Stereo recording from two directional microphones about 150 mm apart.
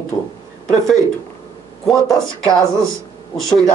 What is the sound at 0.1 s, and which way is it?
Speech, 25° left (ahead or behind).